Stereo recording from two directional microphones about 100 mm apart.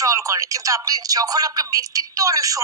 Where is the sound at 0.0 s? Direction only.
35° right (ahead or behind).